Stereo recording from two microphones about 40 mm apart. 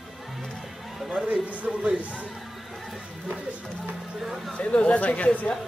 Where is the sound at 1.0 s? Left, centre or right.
Right.